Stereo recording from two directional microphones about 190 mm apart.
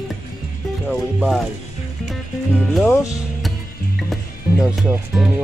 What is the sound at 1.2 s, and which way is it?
Speech, centre (ahead or behind).